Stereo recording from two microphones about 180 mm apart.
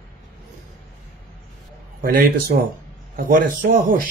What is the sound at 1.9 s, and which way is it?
Speech, 55° right (ahead or behind).